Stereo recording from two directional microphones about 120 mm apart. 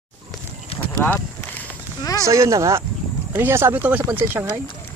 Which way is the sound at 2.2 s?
25° right (ahead or behind).